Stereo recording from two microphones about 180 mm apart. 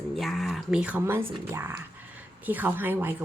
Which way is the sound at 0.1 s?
Centre (ahead or behind).